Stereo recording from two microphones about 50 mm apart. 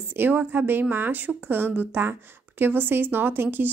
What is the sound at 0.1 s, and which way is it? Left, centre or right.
Speech, right.